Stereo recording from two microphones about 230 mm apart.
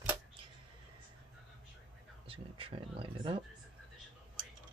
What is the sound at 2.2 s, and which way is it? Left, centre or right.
Speech, right.